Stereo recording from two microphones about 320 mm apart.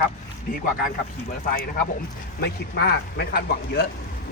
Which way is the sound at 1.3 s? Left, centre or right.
Left.